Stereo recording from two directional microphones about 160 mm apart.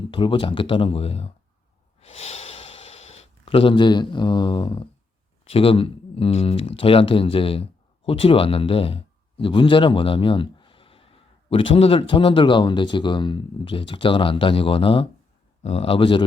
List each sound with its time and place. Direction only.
0.1 s speech: 35° left (ahead or behind)
2.0 s snort: 40° left (ahead or behind)
5.5 s speech: 35° left (ahead or behind)